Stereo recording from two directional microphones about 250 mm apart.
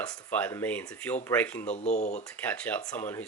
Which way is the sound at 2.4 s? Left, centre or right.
Centre.